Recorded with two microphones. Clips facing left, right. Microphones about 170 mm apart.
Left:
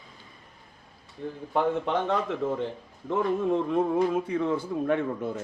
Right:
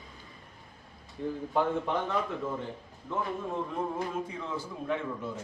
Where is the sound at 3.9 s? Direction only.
60° left (ahead or behind).